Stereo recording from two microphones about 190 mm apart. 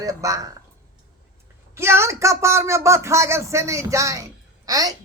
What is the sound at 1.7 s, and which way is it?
A woman's voice, 15° right (ahead or behind).